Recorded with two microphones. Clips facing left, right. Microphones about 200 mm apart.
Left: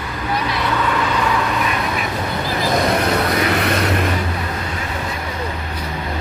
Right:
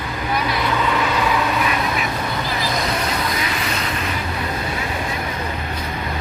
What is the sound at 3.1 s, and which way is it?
Vehicle, 65° left (ahead or behind).